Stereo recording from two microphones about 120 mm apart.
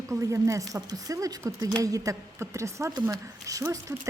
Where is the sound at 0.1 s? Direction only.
25° right (ahead or behind).